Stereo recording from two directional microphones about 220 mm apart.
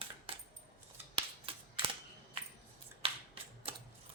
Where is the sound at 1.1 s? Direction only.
25° right (ahead or behind).